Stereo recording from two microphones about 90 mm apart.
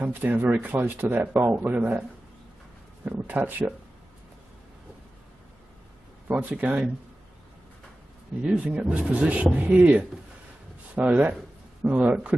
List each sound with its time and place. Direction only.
0.0 s speech: 20° right (ahead or behind)
3.1 s speech: 20° right (ahead or behind)
6.2 s speech: 20° right (ahead or behind)
8.5 s speech: 10° right (ahead or behind)